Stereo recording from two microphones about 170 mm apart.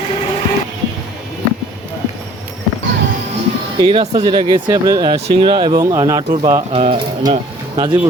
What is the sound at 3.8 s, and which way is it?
Speech, 30° right (ahead or behind).